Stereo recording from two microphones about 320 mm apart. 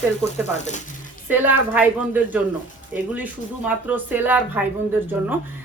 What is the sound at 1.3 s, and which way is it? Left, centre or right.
A woman's voice, centre.